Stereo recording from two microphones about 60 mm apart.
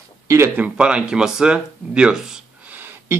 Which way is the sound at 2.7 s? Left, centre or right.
Right.